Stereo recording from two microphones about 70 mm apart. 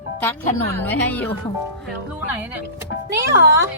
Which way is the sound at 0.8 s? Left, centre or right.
Left.